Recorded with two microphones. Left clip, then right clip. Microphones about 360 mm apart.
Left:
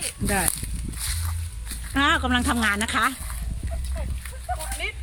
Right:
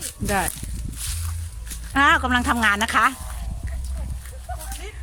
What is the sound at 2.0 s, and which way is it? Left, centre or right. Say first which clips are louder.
Speech: right 4 dB; centre.